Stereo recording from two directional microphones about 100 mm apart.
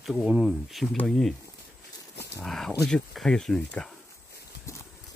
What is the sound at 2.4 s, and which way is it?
Speech, 5° left (ahead or behind).